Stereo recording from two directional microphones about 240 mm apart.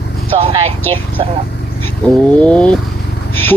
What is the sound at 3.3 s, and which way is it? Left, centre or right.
Vehicle, centre.